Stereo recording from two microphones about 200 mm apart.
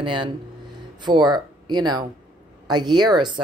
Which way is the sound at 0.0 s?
25° right (ahead or behind).